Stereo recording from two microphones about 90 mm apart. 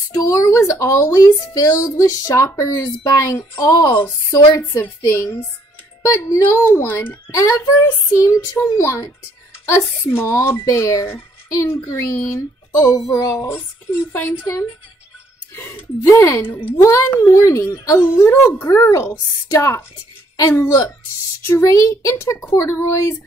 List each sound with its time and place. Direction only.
0.1 s speech: 40° left (ahead or behind)
4.8 s speech: 30° left (ahead or behind)
6.6 s speech: 20° left (ahead or behind)
7.2 s speech: 35° left (ahead or behind)
16.0 s speech: 35° left (ahead or behind)